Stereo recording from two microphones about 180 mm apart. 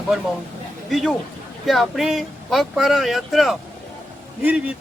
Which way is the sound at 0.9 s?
Centre (ahead or behind).